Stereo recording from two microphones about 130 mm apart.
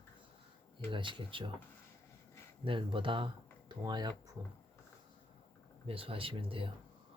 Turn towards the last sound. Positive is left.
turn(degrees=-45)  # may be behind; listen again after turning